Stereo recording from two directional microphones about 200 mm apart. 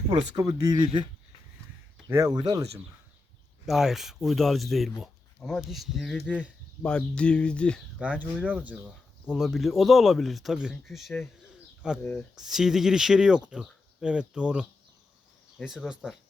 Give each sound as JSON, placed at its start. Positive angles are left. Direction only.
{"t": 0.1, "sound": "speech", "side_deg": -20}
{"t": 2.0, "sound": "speech", "side_deg": -15}
{"t": 3.7, "sound": "speech", "side_deg": 0}
{"t": 8.2, "sound": "speech", "side_deg": -10}